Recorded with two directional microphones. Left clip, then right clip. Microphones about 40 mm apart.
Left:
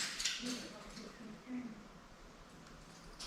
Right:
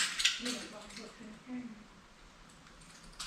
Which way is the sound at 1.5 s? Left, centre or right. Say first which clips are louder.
Right 2 dB; left.